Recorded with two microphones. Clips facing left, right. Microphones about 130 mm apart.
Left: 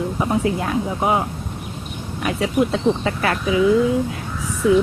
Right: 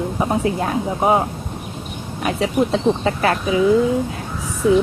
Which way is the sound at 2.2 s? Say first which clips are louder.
Right 1 dB; 25° right (ahead or behind).